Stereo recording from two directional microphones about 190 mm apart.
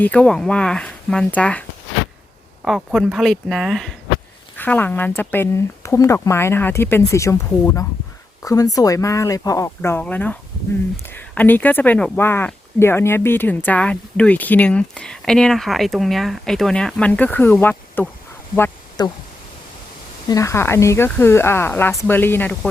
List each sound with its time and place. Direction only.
0.0 s speech: 5° left (ahead or behind)
2.6 s speech: centre (ahead or behind); by 19.1 s 15° left (ahead or behind)
20.2 s speech: 15° left (ahead or behind)